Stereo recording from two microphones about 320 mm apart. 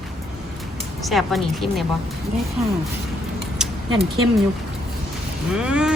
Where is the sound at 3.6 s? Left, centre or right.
Centre.